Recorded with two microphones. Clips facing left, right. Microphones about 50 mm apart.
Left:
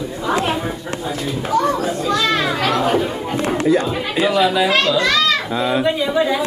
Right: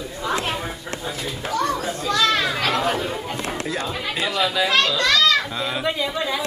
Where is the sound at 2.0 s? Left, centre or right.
Centre.